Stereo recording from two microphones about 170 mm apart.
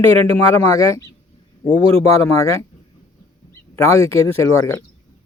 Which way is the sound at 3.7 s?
15° left (ahead or behind).